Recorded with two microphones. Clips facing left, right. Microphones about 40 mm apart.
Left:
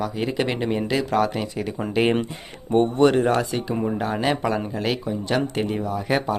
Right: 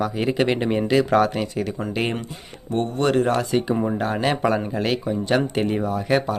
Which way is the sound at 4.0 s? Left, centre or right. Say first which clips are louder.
Right 1 dB; centre.